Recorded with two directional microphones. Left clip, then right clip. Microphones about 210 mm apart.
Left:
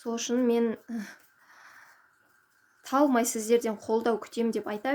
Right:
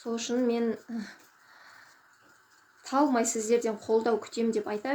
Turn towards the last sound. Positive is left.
turn(degrees=40)  # may be behind; listen again after turning